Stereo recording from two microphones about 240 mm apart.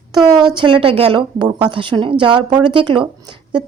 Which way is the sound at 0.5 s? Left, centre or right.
Right.